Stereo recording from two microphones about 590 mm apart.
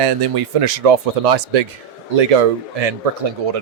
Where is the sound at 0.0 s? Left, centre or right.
Right.